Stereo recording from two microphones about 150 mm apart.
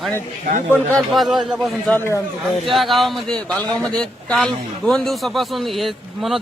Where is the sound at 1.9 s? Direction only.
15° left (ahead or behind).